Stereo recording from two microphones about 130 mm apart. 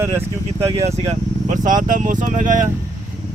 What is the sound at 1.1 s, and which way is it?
Speech, 80° right.